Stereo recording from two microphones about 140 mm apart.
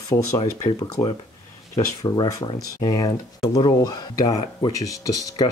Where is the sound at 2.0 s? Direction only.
30° left (ahead or behind).